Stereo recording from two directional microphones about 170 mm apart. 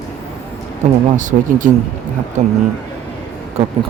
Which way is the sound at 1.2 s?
50° right (ahead or behind).